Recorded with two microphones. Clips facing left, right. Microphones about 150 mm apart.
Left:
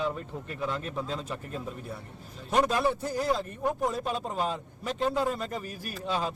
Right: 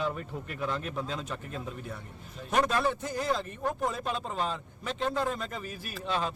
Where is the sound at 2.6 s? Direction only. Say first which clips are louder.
Left 2 dB; 10° left (ahead or behind).